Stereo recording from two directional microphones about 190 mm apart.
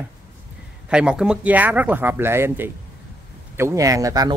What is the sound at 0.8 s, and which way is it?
Speech, 5° right (ahead or behind).